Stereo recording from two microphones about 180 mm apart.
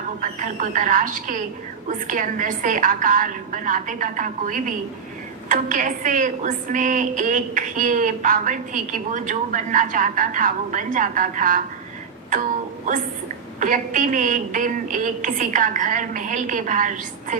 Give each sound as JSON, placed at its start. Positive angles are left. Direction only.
{"t": 0.2, "sound": "a woman's voice", "side_deg": -45}
{"t": 13.6, "sound": "a woman's voice", "side_deg": -45}